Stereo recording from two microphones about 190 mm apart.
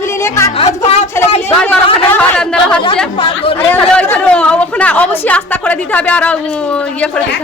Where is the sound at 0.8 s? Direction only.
35° left (ahead or behind).